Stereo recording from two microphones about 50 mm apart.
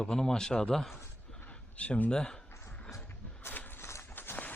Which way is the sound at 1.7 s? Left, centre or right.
Left.